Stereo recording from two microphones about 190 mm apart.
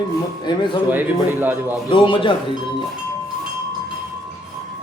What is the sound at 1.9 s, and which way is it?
Speech, 25° left (ahead or behind).